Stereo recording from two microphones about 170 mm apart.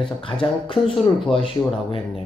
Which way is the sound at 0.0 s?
30° left (ahead or behind).